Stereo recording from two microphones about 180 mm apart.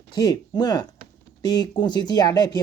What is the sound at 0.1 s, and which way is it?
Speech, 25° left (ahead or behind).